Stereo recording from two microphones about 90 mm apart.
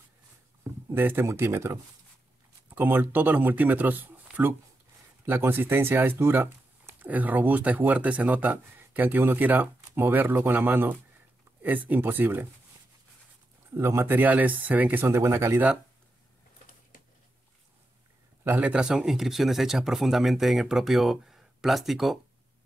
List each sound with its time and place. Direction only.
0.9 s speech: 25° right (ahead or behind)
13.7 s speech: 30° right (ahead or behind)
15.1 s speech: 30° right (ahead or behind)
18.6 s speech: 10° right (ahead or behind)